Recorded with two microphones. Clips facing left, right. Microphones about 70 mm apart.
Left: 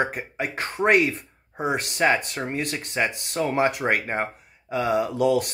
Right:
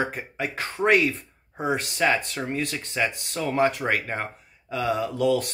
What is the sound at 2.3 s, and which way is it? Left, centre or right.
Speech, centre.